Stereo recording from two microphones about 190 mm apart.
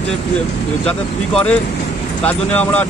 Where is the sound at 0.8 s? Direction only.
5° left (ahead or behind).